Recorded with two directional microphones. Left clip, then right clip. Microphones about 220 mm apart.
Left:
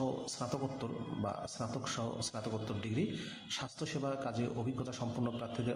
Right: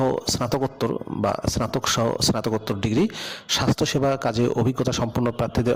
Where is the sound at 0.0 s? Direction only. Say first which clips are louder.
Right 15 dB; 50° right (ahead or behind).